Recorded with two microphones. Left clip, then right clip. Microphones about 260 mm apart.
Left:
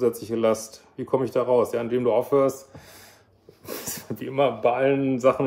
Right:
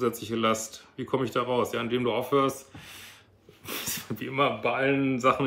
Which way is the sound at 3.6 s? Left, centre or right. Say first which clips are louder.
Even; centre.